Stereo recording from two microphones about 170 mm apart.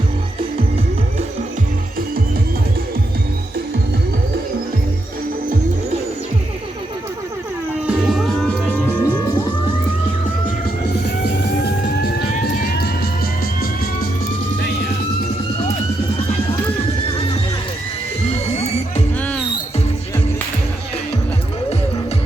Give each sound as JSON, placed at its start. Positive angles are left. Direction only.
{"t": 7.9, "sound": "music", "side_deg": 0}
{"t": 12.5, "sound": "music", "side_deg": 65}
{"t": 18.3, "sound": "music", "side_deg": 40}